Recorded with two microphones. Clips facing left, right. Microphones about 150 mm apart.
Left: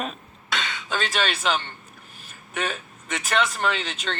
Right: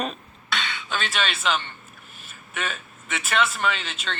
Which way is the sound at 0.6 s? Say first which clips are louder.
Left 2 dB; 40° left (ahead or behind).